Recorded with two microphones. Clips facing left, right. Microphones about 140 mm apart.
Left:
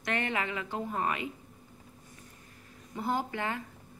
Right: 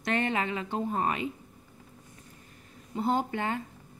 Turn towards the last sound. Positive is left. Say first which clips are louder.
# right 3 dB
turn(degrees=-25)  # may be behind; listen again after turning